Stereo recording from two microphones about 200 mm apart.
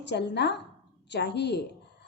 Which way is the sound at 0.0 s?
60° left (ahead or behind).